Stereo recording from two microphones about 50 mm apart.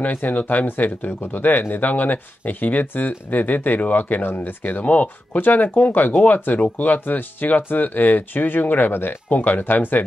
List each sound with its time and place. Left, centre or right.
0.0 s speech: left